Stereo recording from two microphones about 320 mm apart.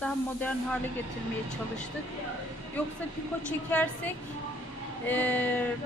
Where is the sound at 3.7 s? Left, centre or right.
Centre.